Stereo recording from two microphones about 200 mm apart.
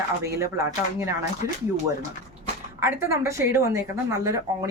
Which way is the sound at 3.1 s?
15° right (ahead or behind).